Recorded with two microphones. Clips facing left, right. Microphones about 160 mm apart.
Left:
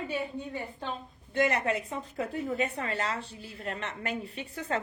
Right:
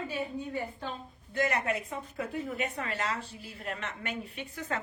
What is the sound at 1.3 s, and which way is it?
A woman's voice, 30° left (ahead or behind).